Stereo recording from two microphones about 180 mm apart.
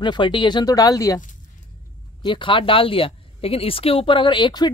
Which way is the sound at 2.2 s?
25° left (ahead or behind).